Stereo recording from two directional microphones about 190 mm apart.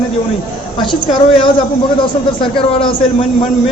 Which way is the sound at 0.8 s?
25° left (ahead or behind).